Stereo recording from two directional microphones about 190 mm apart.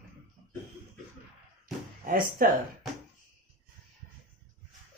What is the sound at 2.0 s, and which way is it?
Speech, 50° right (ahead or behind).